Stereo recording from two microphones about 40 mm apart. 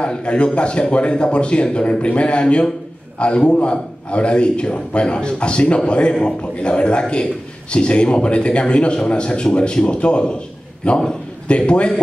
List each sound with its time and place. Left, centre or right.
0.0 s a man's voice: left